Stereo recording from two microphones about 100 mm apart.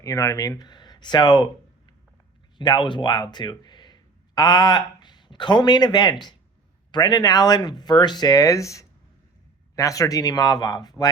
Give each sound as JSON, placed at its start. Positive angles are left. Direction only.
{"t": 0.0, "sound": "speech", "side_deg": 35}
{"t": 2.6, "sound": "speech", "side_deg": 50}